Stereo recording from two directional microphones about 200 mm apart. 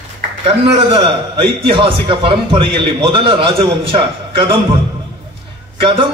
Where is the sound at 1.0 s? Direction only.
25° right (ahead or behind).